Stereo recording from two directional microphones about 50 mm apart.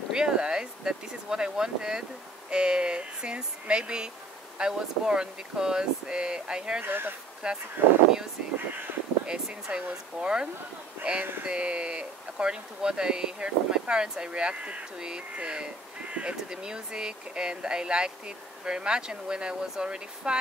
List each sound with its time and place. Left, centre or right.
0.1 s speech: centre
6.8 s speech: right
7.4 s speech: centre
9.2 s speech: centre